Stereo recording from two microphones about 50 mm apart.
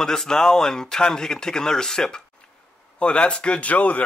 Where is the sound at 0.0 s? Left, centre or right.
Centre.